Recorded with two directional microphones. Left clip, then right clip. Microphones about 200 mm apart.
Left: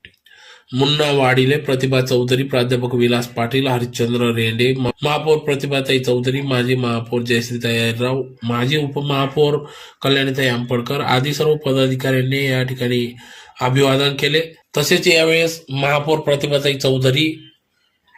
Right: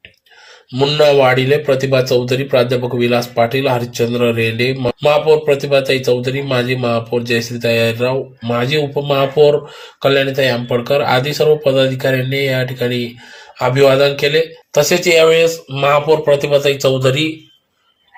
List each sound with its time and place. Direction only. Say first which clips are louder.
0.7 s speech: right 5 dB; 10° left (ahead or behind)